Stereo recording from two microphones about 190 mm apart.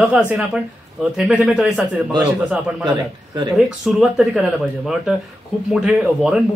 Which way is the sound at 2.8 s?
25° right (ahead or behind).